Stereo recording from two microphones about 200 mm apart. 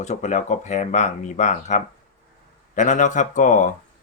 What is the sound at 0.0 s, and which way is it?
Speech, 35° left (ahead or behind).